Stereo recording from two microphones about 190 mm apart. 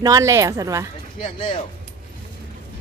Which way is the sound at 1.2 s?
25° left (ahead or behind).